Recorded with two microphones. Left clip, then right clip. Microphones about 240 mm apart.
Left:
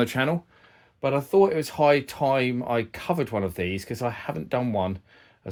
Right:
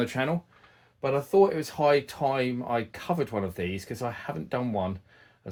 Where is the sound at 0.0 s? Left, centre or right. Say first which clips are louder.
Left 4 dB; left.